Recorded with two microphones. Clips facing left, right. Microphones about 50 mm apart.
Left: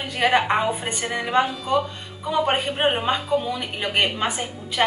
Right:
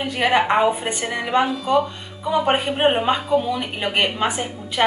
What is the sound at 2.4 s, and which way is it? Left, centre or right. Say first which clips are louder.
A woman's voice: right 3 dB; centre.